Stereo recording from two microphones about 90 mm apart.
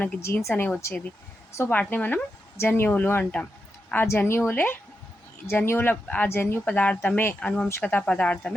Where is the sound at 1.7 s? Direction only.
15° left (ahead or behind).